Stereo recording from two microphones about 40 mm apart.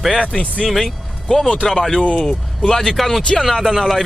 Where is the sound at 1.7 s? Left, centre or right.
Centre.